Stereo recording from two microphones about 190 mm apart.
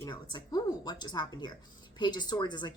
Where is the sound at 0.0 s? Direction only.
25° left (ahead or behind).